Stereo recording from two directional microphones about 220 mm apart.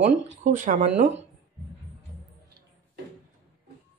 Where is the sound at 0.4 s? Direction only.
35° right (ahead or behind).